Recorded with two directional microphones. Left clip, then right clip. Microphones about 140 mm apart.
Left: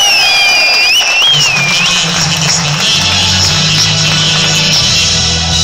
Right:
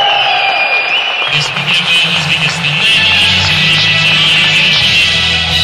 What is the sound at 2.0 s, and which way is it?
Music, 20° right (ahead or behind).